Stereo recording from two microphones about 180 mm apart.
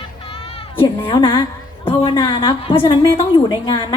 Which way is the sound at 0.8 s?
25° left (ahead or behind).